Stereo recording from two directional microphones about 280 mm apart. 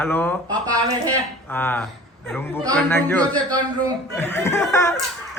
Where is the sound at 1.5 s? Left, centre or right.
Centre.